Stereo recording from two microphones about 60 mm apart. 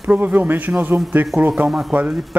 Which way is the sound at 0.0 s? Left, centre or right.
Right.